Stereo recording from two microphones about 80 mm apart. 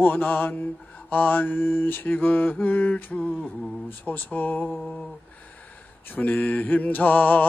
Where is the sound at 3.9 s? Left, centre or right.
Left.